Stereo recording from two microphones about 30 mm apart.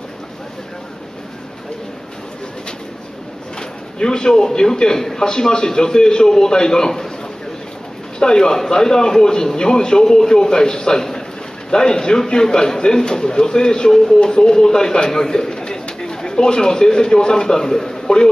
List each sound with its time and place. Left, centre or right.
4.0 s a man's voice: left
8.2 s a man's voice: left